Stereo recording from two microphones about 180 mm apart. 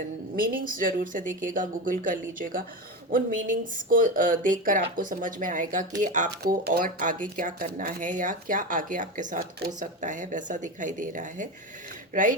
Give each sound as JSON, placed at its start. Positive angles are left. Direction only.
{"t": 0.3, "sound": "speech", "side_deg": -50}
{"t": 6.4, "sound": "speech", "side_deg": -60}